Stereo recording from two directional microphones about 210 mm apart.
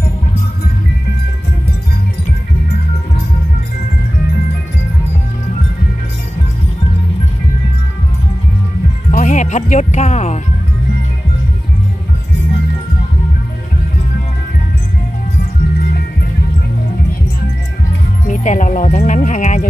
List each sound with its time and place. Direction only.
9.1 s speech: 35° left (ahead or behind)
18.2 s speech: 35° left (ahead or behind)